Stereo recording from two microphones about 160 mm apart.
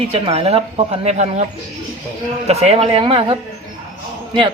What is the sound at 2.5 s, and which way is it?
Speech, 40° right (ahead or behind).